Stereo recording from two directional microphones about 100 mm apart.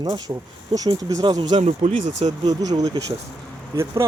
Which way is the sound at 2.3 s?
40° right (ahead or behind).